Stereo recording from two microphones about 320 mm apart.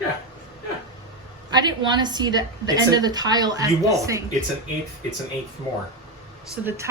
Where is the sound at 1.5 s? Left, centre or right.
Centre.